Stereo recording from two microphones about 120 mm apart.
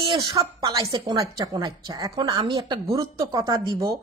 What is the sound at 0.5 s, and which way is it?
A woman's voice, 30° right (ahead or behind).